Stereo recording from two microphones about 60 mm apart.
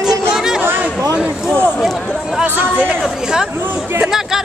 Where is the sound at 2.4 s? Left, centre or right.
Right.